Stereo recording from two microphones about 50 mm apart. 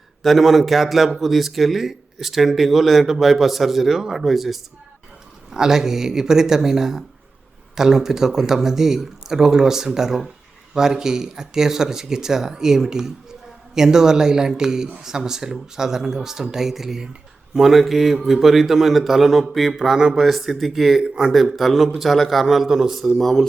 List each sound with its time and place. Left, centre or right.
0.2 s a man's voice: centre
21.0 s speech: centre
21.3 s a man's voice: centre
23.1 s speech: centre